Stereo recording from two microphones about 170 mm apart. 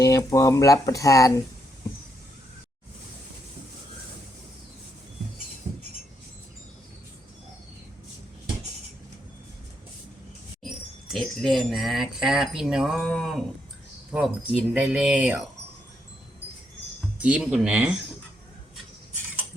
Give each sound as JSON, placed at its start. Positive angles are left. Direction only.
{"t": 0.0, "sound": "speech", "side_deg": 20}
{"t": 11.1, "sound": "speech", "side_deg": 0}
{"t": 17.2, "sound": "speech", "side_deg": -5}